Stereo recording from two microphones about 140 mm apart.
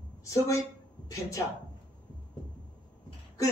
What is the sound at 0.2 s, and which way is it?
Speech, 20° left (ahead or behind).